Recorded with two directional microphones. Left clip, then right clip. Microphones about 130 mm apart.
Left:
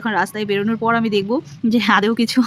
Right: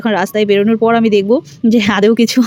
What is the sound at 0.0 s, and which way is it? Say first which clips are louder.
Speech: right 6 dB; 30° right (ahead or behind).